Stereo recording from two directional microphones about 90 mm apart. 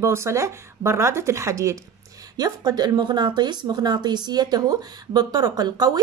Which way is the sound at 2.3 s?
45° right (ahead or behind).